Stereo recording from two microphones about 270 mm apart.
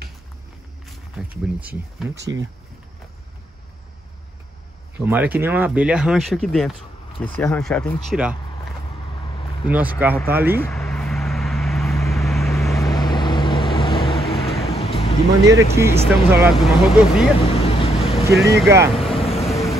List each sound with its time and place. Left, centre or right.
1.1 s speech: centre
4.9 s speech: centre
9.7 s speech: centre
10.6 s vehicle: centre
12.7 s vehicle: centre
14.8 s a sound: left
15.4 s speech: centre
17.6 s vehicle: left
18.3 s speech: centre
19.2 s vehicle: left